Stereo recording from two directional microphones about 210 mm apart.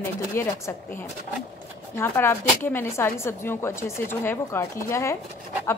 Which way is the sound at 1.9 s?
10° left (ahead or behind).